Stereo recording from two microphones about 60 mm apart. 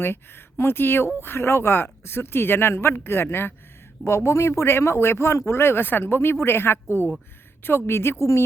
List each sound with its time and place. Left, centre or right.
0.0 s speech: left
8.2 s speech: left